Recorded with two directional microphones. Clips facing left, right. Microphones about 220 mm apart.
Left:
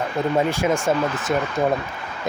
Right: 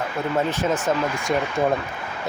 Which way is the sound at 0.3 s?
10° left (ahead or behind).